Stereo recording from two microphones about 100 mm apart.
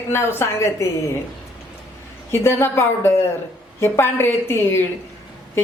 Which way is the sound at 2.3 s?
25° left (ahead or behind).